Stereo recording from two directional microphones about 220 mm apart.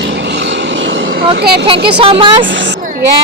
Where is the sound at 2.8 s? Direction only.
35° right (ahead or behind).